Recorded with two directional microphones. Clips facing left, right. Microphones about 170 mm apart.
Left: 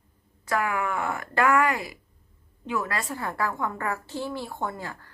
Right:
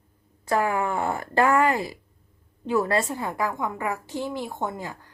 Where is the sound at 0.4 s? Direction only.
30° right (ahead or behind).